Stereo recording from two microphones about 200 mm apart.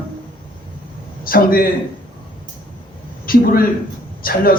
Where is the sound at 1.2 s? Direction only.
45° left (ahead or behind).